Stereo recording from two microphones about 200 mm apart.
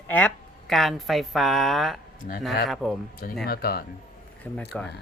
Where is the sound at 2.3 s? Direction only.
45° left (ahead or behind).